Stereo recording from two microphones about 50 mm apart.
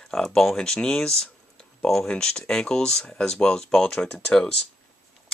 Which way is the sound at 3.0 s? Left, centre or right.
Left.